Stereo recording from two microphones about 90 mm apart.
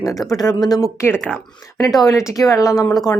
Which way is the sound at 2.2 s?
40° left (ahead or behind).